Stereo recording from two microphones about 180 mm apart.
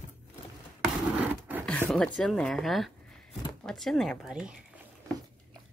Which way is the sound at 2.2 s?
5° left (ahead or behind).